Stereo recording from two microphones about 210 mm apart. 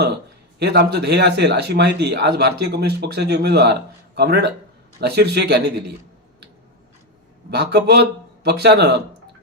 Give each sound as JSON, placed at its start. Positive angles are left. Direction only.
{"t": 0.6, "sound": "a man's voice", "side_deg": -50}
{"t": 7.5, "sound": "a man's voice", "side_deg": -50}